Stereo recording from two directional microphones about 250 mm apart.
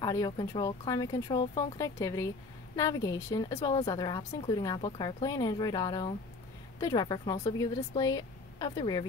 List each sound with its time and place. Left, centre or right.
0.0 s speech: centre